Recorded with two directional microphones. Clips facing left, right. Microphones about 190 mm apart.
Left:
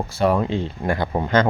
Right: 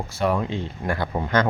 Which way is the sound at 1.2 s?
35° left (ahead or behind).